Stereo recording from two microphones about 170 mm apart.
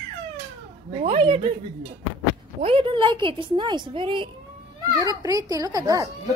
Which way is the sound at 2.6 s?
30° right (ahead or behind).